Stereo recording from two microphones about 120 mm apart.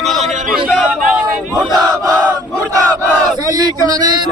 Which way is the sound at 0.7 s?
Centre (ahead or behind).